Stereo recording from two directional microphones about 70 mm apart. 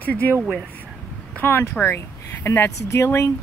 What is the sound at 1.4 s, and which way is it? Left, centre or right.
Speech, left.